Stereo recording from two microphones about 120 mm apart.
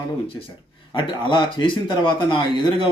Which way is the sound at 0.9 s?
40° left (ahead or behind).